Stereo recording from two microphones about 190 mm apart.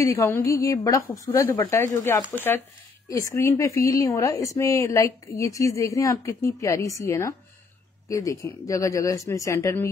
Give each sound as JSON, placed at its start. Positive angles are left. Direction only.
{"t": 0.0, "sound": "a woman's voice", "side_deg": 15}